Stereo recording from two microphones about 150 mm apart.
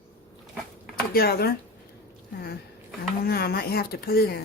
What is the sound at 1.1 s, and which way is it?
Speech, 90° left.